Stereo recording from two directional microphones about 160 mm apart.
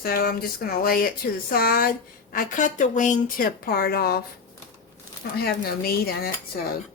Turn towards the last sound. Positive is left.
turn(degrees=75)  # may be behind; listen again after turning